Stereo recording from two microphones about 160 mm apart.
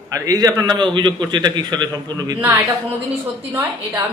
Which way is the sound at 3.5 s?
15° right (ahead or behind).